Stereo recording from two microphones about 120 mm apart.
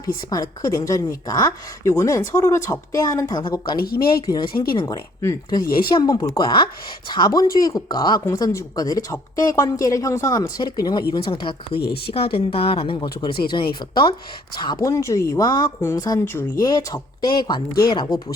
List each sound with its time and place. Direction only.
0.0 s a woman's voice: 30° left (ahead or behind)
4.9 s speech: 25° left (ahead or behind)
14.8 s a woman's voice: 25° left (ahead or behind)